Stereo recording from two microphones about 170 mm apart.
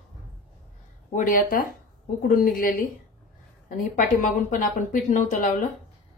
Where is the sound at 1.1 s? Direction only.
50° left (ahead or behind).